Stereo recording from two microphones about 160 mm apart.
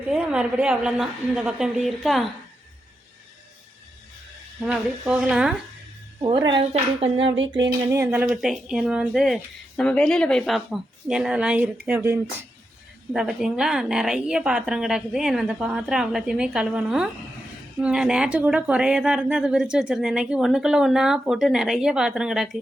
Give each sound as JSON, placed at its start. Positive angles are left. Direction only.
{"t": 0.1, "sound": "speech", "side_deg": -5}
{"t": 4.6, "sound": "speech", "side_deg": -5}
{"t": 6.2, "sound": "a woman's voice", "side_deg": -30}
{"t": 7.9, "sound": "speech", "side_deg": -15}
{"t": 8.3, "sound": "speech", "side_deg": -5}
{"t": 13.1, "sound": "speech", "side_deg": -5}